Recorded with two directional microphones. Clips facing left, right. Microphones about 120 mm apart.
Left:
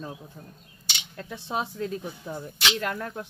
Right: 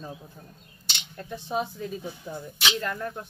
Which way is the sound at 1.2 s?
85° left.